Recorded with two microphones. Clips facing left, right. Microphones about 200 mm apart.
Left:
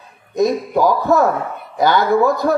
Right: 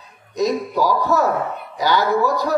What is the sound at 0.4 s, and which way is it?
Speech, 50° left (ahead or behind).